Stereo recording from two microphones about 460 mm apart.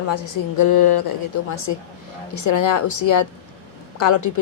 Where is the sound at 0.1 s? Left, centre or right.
Left.